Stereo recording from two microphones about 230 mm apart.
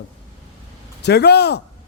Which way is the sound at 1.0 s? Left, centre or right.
Left.